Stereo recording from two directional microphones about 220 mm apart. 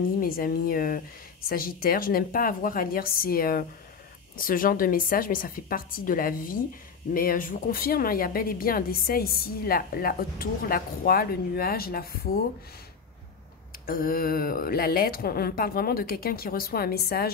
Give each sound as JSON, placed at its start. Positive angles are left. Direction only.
{"t": 0.2, "sound": "a woman's voice", "side_deg": 40}
{"t": 13.8, "sound": "a woman's voice", "side_deg": 40}